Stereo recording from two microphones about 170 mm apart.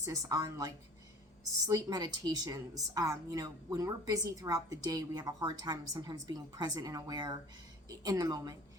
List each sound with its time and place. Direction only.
0.0 s a woman's voice: 20° right (ahead or behind)